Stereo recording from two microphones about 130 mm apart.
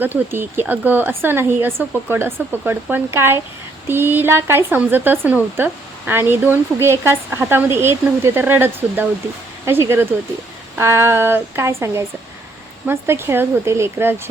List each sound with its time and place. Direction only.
0.0 s speech: 15° right (ahead or behind)